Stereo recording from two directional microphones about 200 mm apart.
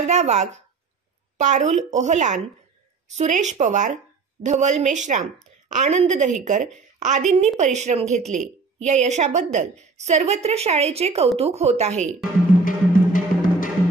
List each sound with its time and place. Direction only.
0.0 s a woman's voice: 35° right (ahead or behind)
12.6 s music: 40° left (ahead or behind)